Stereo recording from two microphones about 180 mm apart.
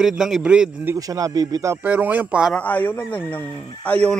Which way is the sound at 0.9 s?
20° right (ahead or behind).